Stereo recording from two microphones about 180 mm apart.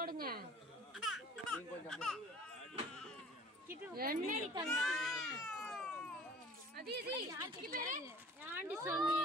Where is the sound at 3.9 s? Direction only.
55° right (ahead or behind).